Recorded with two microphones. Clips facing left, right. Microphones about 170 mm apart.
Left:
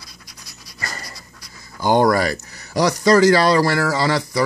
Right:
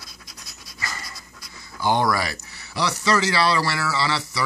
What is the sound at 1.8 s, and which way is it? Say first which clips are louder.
Speech: left 6 dB; 45° left (ahead or behind).